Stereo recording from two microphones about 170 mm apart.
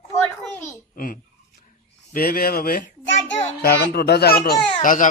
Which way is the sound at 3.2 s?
80° left.